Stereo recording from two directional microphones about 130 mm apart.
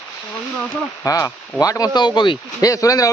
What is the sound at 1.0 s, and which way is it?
Speech, 25° left (ahead or behind).